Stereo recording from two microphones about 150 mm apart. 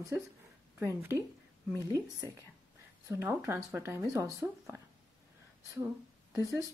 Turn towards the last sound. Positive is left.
turn(degrees=-20)  # may be behind; listen again after turning